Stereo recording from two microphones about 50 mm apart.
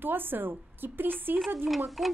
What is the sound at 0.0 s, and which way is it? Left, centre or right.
A woman's voice, right.